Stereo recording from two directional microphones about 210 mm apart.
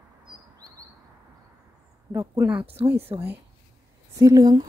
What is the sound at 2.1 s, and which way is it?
Speech, 10° right (ahead or behind).